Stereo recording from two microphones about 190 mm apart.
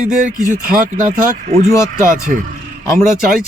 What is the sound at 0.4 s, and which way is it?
Speech, 45° right (ahead or behind).